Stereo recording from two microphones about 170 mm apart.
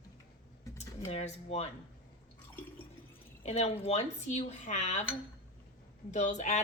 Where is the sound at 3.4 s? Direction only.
35° left (ahead or behind).